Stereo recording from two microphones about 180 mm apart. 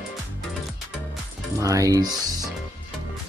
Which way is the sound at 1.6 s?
20° right (ahead or behind).